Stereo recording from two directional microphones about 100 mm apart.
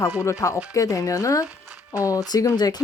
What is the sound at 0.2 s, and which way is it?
Speech, 30° left (ahead or behind).